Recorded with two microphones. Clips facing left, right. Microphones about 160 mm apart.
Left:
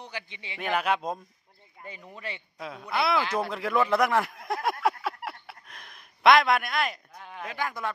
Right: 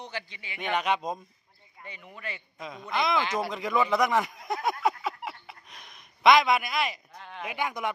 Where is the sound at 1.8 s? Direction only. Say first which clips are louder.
Left 2 dB; 35° left (ahead or behind).